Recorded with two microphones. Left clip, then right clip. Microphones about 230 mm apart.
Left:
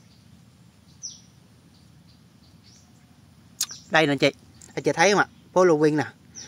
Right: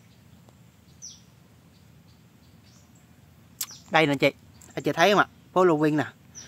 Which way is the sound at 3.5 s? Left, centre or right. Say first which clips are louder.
Left 1 dB; centre.